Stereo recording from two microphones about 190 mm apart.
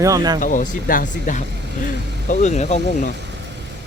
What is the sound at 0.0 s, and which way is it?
Speech, 20° right (ahead or behind).